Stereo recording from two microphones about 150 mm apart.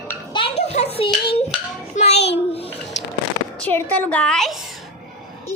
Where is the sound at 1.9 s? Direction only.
45° left (ahead or behind).